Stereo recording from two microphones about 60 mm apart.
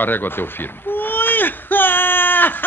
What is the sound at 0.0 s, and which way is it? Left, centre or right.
Speech, left.